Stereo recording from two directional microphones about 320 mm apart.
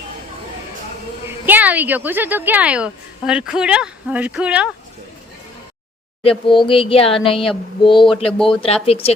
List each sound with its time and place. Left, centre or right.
1.5 s a woman's voice: centre
6.5 s speech: centre